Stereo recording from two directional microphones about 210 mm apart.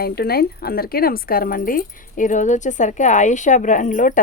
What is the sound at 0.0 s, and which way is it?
A woman's voice, 45° left (ahead or behind).